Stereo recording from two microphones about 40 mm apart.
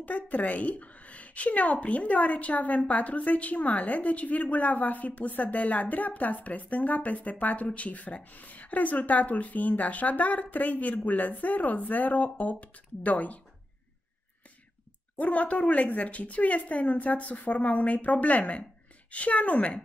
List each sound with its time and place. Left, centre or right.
0.0 s a woman's voice: left
15.1 s a woman's voice: left